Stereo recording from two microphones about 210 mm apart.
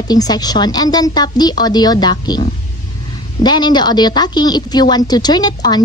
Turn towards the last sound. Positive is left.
turn(degrees=20)  # may be behind; listen again after turning